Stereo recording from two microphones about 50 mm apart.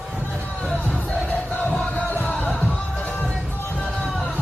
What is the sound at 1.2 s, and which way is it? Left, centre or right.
Crowd, left.